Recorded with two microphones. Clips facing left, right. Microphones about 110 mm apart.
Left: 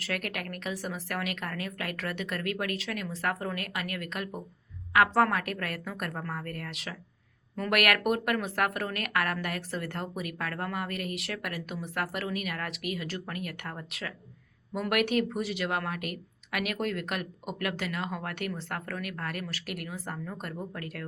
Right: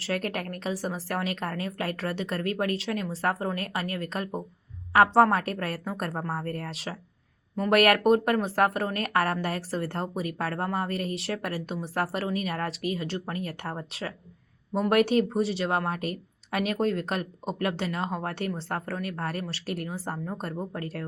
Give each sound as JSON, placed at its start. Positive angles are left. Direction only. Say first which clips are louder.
{"t": 0.0, "sound": "speech", "louder": "right 5 dB", "side_deg": -30}